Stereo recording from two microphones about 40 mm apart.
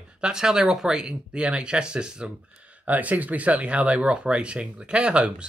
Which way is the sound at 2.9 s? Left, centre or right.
Right.